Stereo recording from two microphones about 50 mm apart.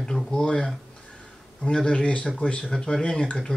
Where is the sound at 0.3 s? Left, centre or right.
Centre.